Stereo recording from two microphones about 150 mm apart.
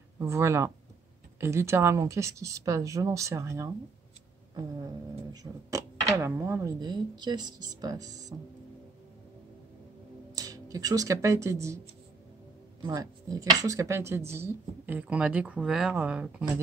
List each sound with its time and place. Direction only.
0.2 s speech: 20° right (ahead or behind)
5.3 s speech: 25° right (ahead or behind)
10.3 s speech: 25° right (ahead or behind)
12.8 s speech: 25° right (ahead or behind); by 16.4 s 10° right (ahead or behind)